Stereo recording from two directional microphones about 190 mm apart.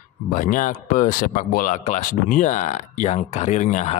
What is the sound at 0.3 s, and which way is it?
Speech, 45° left (ahead or behind).